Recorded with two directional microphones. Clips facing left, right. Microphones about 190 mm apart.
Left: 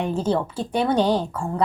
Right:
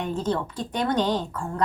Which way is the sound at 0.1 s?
10° left (ahead or behind).